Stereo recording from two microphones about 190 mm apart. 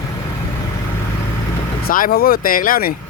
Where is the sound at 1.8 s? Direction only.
50° left (ahead or behind).